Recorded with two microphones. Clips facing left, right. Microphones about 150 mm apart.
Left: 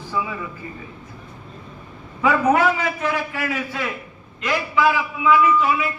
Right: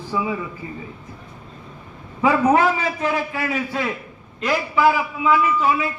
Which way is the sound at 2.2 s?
30° right (ahead or behind).